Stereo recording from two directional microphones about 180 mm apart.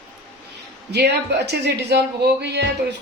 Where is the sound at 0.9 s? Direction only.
65° right (ahead or behind).